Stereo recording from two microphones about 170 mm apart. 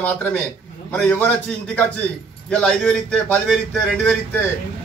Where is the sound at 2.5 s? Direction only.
5° left (ahead or behind).